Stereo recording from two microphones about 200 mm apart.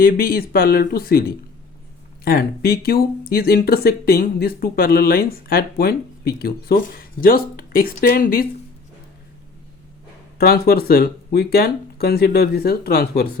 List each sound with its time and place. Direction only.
0.0 s speech: 50° left (ahead or behind)
10.3 s speech: 50° left (ahead or behind)